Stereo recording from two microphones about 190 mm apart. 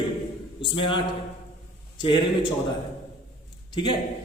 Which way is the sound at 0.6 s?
25° left (ahead or behind).